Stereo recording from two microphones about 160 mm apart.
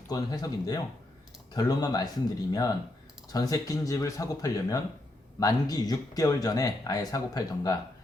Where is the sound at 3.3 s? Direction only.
25° left (ahead or behind).